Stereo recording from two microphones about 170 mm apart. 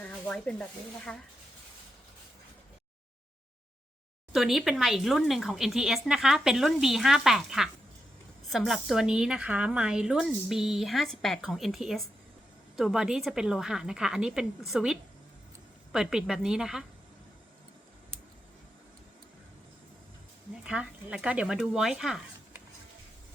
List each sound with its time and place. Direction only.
0.3 s a woman's voice: 5° left (ahead or behind)
4.3 s a woman's voice: centre (ahead or behind)
20.7 s a woman's voice: 5° right (ahead or behind)